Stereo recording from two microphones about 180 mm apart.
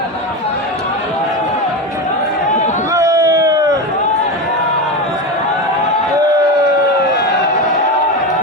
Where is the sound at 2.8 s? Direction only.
20° right (ahead or behind).